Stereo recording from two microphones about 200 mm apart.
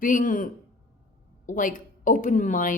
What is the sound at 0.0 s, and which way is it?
A woman's voice, 40° left (ahead or behind).